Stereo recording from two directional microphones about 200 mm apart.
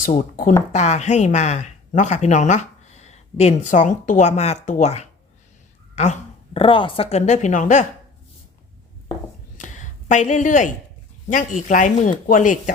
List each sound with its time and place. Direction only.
0.0 s speech: 40° left (ahead or behind)
9.6 s a sound: 40° left (ahead or behind)
11.3 s speech: 40° left (ahead or behind)